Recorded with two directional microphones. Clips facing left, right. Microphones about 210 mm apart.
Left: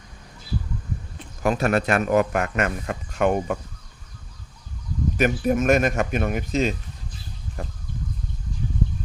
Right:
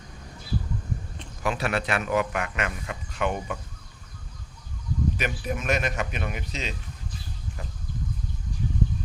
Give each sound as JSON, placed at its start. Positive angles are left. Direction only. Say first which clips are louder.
{"t": 1.4, "sound": "speech", "louder": "left 6 dB", "side_deg": 45}
{"t": 5.1, "sound": "speech", "louder": "left 9 dB", "side_deg": 45}